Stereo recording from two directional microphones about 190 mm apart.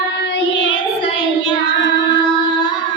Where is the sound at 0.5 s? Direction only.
25° left (ahead or behind).